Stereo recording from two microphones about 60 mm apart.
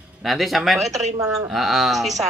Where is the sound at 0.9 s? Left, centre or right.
Right.